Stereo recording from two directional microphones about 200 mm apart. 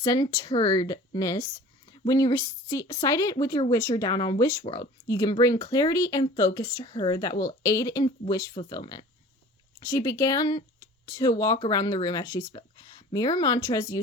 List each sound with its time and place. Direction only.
0.0 s speech: 20° left (ahead or behind)